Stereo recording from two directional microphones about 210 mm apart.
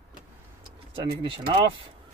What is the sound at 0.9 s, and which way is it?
Speech, 25° right (ahead or behind).